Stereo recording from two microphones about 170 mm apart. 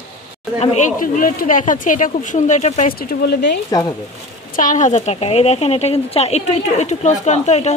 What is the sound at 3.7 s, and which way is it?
Speech, 20° left (ahead or behind).